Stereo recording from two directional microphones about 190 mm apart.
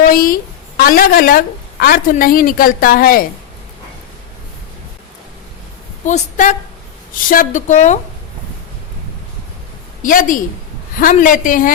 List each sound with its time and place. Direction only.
0.1 s a woman's voice: 50° left (ahead or behind)
6.1 s speech: 40° left (ahead or behind)
10.0 s a woman's voice: 45° left (ahead or behind)